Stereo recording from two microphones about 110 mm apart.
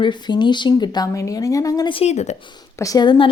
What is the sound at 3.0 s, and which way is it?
Speech, 45° left (ahead or behind).